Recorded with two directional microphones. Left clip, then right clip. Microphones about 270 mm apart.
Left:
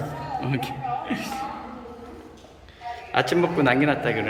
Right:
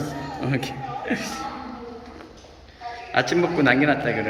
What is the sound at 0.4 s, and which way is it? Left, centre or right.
Speech, centre.